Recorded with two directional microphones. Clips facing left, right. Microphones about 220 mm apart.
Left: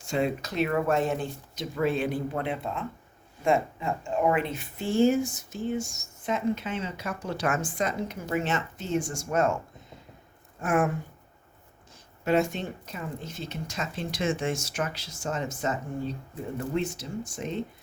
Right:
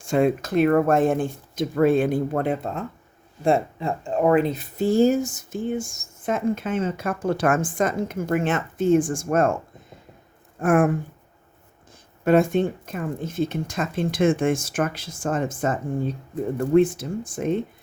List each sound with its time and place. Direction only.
0.0 s speech: 50° right (ahead or behind)
10.6 s speech: 50° right (ahead or behind)
12.2 s speech: 55° right (ahead or behind)